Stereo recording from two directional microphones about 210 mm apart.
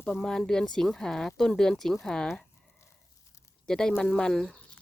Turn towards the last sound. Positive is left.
turn(degrees=0)  # may be behind; listen again after turning